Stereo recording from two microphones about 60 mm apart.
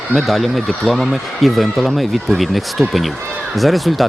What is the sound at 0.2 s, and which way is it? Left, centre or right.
Speech, centre.